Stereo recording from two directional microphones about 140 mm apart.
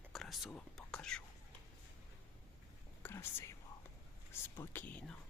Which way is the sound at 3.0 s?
15° left (ahead or behind).